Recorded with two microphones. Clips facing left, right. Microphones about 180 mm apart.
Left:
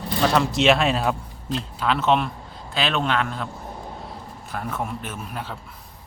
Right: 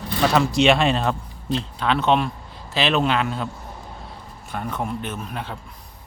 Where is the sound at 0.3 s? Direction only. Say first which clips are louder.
Right 2 dB; centre (ahead or behind).